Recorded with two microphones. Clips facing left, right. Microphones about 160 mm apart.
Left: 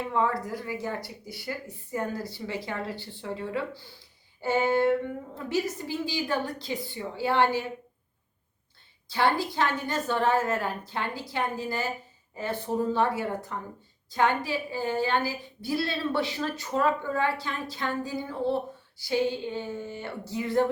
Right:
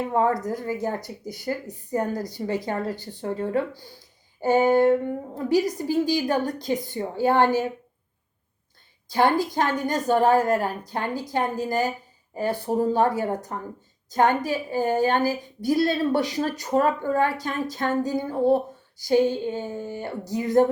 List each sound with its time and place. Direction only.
0.1 s a woman's voice: 45° right (ahead or behind)
9.0 s a woman's voice: 45° right (ahead or behind)